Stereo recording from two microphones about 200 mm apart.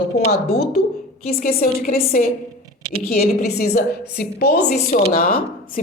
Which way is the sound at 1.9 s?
30° left (ahead or behind).